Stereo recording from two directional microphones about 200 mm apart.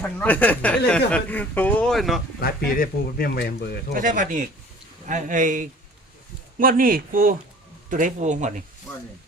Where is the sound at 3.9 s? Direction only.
40° right (ahead or behind).